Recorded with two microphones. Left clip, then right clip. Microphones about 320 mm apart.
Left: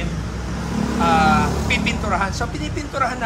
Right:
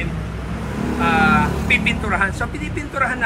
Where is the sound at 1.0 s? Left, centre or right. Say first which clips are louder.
Even; centre.